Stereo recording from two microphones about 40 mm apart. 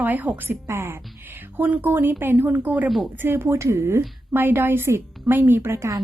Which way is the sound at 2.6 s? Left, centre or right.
Right.